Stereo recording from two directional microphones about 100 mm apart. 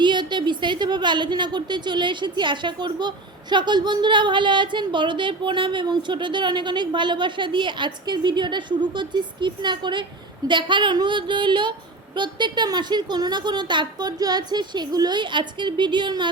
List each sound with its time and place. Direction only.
0.0 s speech: 50° right (ahead or behind)